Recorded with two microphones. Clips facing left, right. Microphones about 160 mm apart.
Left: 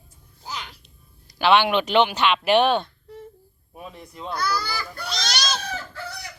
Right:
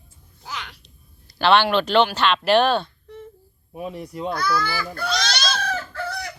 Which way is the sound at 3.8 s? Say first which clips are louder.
Right 8 dB; 10° right (ahead or behind).